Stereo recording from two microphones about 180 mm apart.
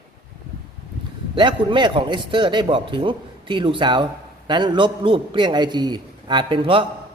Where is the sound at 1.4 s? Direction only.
25° right (ahead or behind).